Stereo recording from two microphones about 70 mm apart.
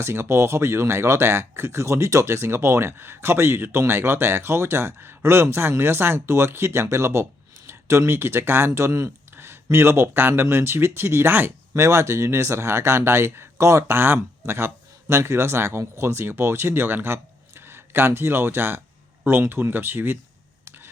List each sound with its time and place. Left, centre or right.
0.0 s speech: right
9.3 s a sound: right
9.6 s speech: right
11.7 s speech: right
20.7 s camera: right